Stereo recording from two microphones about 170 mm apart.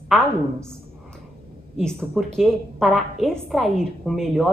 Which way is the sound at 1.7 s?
Centre (ahead or behind).